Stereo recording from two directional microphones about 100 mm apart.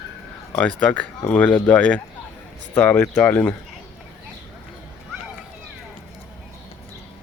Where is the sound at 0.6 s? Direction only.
10° left (ahead or behind).